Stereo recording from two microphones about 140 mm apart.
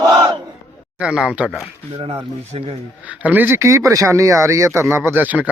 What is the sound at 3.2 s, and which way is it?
Speech, 15° right (ahead or behind).